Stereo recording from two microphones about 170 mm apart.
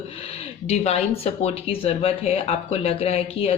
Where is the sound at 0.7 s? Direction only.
40° left (ahead or behind).